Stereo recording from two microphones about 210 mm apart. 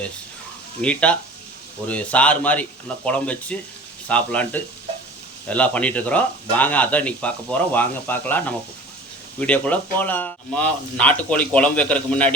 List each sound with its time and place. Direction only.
0.8 s speech: 5° left (ahead or behind)